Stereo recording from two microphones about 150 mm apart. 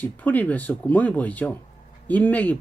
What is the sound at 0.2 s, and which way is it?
Speech, 10° left (ahead or behind).